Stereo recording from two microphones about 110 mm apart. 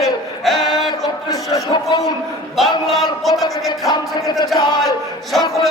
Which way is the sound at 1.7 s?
40° left (ahead or behind).